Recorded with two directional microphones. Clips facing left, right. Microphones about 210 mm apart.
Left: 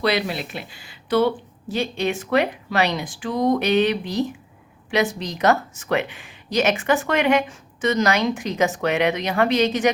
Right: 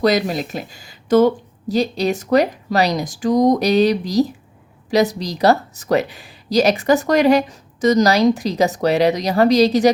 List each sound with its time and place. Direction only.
0.0 s speech: 40° right (ahead or behind)